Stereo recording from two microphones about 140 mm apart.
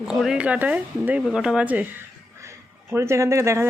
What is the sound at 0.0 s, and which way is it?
Speech, 5° right (ahead or behind).